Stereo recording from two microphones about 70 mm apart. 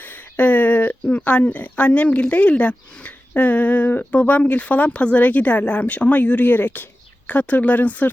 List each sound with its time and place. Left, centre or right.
0.0 s speech: left